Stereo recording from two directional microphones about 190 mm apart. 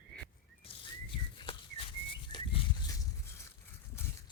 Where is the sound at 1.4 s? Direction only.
30° left (ahead or behind).